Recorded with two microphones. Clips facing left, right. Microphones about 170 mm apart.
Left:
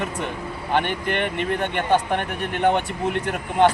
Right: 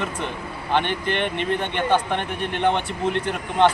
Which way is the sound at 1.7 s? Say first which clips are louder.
Left 1 dB; 5° left (ahead or behind).